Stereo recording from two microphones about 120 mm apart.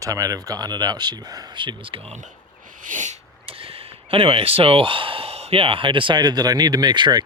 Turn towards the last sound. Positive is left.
turn(degrees=-35)  # may be behind; listen again after turning